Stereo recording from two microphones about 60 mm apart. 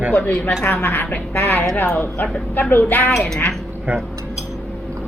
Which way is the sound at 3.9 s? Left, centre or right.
Right.